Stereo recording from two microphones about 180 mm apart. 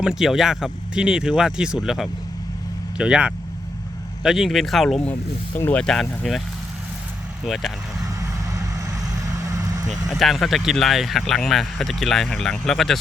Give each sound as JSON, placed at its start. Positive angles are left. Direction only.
{"t": 0.0, "sound": "speech", "side_deg": 0}
{"t": 7.4, "sound": "speech", "side_deg": 0}
{"t": 8.0, "sound": "vehicle", "side_deg": -20}
{"t": 10.1, "sound": "speech", "side_deg": 0}